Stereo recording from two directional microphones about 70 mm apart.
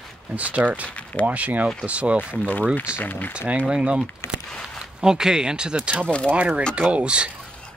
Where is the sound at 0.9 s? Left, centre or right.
Centre.